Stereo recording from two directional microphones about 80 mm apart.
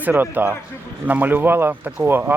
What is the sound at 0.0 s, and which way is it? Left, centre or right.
Speech, right.